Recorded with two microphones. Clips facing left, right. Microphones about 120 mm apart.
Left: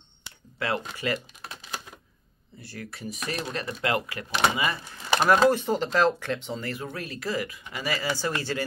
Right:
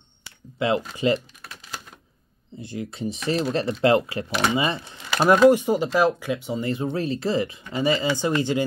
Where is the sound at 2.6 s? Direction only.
20° right (ahead or behind).